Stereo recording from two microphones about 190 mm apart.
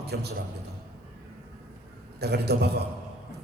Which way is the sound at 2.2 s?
60° right (ahead or behind).